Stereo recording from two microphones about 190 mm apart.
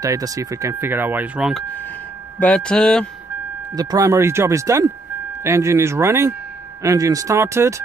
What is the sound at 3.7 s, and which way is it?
Speech, 15° right (ahead or behind).